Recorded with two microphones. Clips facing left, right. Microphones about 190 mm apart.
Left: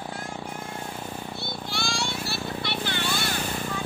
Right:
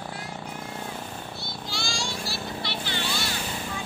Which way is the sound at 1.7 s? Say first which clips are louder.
Left 2 dB; 60° left (ahead or behind).